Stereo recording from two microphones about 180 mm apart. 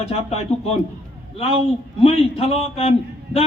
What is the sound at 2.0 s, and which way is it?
Speech, 30° left (ahead or behind).